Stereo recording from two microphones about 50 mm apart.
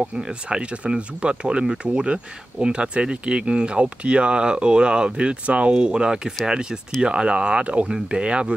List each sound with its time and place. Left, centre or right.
0.0 s speech: centre